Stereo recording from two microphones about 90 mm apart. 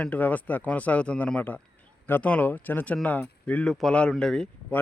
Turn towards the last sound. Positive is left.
turn(degrees=10)  # may be behind; listen again after turning